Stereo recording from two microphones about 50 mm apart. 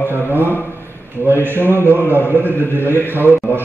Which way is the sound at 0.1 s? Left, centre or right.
Right.